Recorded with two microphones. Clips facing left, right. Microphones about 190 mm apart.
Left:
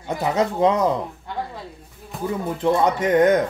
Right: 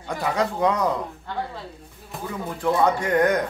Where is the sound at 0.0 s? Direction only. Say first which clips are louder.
Left 3 dB; 20° left (ahead or behind).